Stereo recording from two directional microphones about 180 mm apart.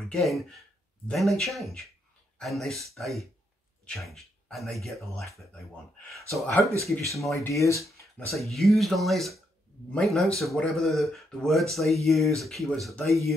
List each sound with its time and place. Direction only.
0.0 s speech: centre (ahead or behind)
6.7 s speech: 15° right (ahead or behind)
7.4 s speech: 15° left (ahead or behind)
8.4 s speech: centre (ahead or behind)